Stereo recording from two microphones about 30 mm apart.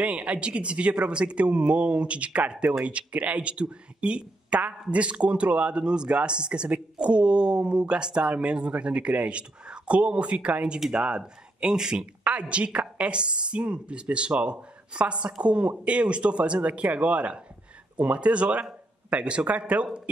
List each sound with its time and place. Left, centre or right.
0.0 s speech: right
11.7 s speech: right
12.3 s speech: right